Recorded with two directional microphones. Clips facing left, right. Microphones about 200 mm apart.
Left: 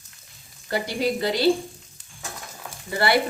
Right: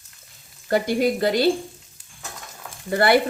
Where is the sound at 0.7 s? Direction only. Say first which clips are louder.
Right 5 dB; 50° right (ahead or behind).